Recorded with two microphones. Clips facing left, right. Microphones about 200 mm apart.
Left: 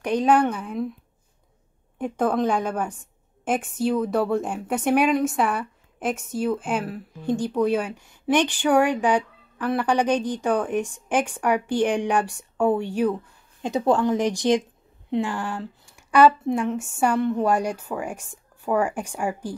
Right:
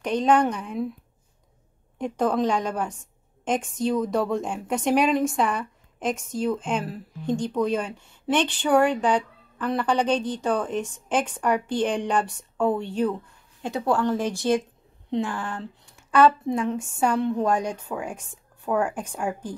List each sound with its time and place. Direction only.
0.0 s a woman's voice: 10° left (ahead or behind)
2.0 s speech: 5° left (ahead or behind)
16.0 s a sound: 10° left (ahead or behind)
16.4 s speech: 5° left (ahead or behind)